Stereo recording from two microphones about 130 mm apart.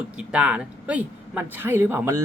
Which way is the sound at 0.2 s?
10° right (ahead or behind).